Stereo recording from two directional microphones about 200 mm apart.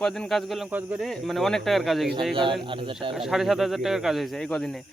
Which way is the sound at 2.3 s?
25° right (ahead or behind).